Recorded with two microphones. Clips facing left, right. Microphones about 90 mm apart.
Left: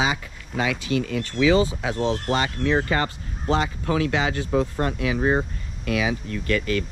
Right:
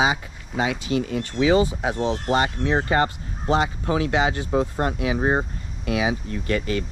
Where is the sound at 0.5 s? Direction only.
25° right (ahead or behind).